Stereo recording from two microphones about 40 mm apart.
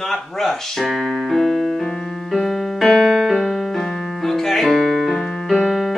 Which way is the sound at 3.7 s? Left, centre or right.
Centre.